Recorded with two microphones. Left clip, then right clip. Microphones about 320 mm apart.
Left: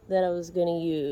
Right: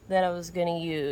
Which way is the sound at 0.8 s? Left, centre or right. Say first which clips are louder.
Left 2 dB; centre.